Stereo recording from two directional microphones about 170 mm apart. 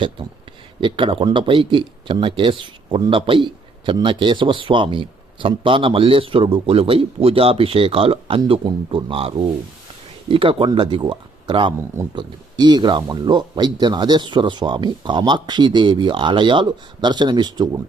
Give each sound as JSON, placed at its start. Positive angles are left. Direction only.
{"t": 0.8, "sound": "speech", "side_deg": -30}